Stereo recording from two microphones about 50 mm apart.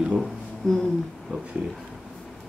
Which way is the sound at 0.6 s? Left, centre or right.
Centre.